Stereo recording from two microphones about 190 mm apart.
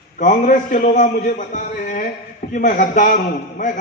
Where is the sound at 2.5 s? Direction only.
45° left (ahead or behind).